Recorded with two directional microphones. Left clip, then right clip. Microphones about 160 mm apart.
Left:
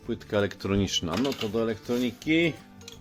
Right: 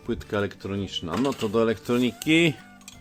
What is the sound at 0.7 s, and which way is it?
Speech, 40° left (ahead or behind).